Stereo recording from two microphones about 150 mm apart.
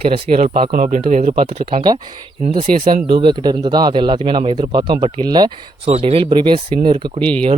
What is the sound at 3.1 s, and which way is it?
Speech, 35° right (ahead or behind).